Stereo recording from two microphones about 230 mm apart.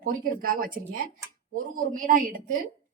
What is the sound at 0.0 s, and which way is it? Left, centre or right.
A woman's voice, right.